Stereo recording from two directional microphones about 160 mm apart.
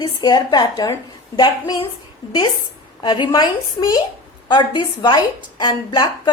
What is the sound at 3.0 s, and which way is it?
A woman's voice, 30° left (ahead or behind).